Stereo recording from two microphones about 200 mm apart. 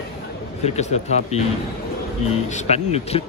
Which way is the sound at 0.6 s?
35° left (ahead or behind).